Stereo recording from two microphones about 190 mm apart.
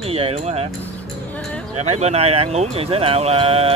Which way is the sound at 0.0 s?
30° right (ahead or behind).